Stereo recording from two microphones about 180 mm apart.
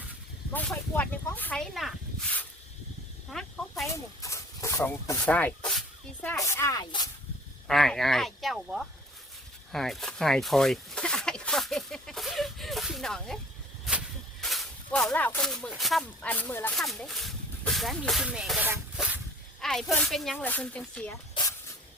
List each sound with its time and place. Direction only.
0.5 s speech: 10° left (ahead or behind)
3.8 s speech: 15° left (ahead or behind)
6.2 s speech: 15° left (ahead or behind)
7.7 s speech: centre (ahead or behind)
9.7 s a sound: centre (ahead or behind)
14.4 s speech: centre (ahead or behind)
18.9 s snake: 5° right (ahead or behind)
19.6 s speech: 5° left (ahead or behind)